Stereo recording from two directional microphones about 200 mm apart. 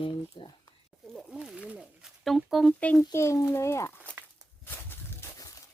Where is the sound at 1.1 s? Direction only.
Centre (ahead or behind).